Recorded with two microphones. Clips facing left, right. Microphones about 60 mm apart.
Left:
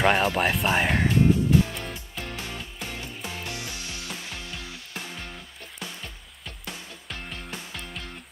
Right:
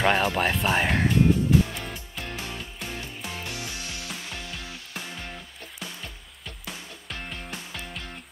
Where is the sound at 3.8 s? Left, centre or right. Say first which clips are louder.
Even; right.